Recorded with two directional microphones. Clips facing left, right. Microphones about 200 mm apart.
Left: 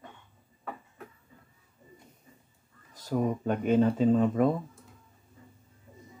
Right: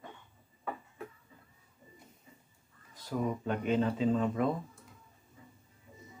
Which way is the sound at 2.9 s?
45° left (ahead or behind).